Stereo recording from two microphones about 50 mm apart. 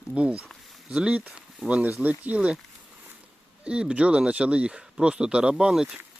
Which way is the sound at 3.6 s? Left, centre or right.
Centre.